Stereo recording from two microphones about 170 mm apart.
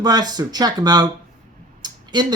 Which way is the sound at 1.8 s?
25° right (ahead or behind).